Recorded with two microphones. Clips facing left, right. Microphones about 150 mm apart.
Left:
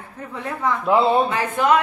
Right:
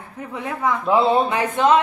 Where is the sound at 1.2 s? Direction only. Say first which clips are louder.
Right 1 dB; 20° right (ahead or behind).